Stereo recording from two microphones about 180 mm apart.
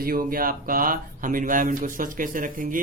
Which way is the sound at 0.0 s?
55° right (ahead or behind).